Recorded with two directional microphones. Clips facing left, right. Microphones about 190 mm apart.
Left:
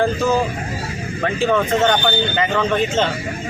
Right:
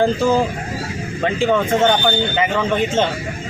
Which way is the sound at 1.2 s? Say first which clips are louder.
Right 1 dB; 15° right (ahead or behind).